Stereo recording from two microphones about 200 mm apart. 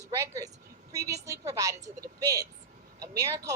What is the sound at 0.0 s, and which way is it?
A woman's voice, 15° right (ahead or behind).